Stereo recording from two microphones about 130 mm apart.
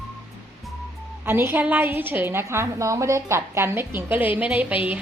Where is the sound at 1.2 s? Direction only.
20° right (ahead or behind).